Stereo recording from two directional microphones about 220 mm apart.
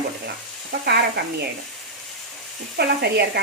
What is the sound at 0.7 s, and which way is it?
Speech, 45° right (ahead or behind).